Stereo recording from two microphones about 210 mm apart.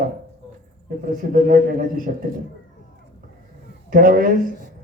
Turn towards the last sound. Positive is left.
turn(degrees=-40)  # may be behind; listen again after turning